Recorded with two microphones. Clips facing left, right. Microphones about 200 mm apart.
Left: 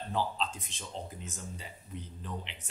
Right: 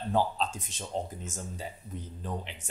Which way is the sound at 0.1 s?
45° right (ahead or behind).